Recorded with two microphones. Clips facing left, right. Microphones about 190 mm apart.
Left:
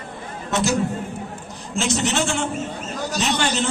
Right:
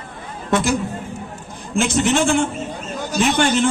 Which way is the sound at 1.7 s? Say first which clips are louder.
Right 4 dB; 55° right (ahead or behind).